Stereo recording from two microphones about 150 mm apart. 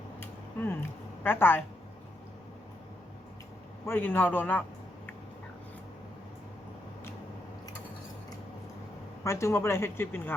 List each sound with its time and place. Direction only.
0.2 s a sound: 15° left (ahead or behind)
3.8 s speech: 15° left (ahead or behind)
9.2 s speech: 20° left (ahead or behind)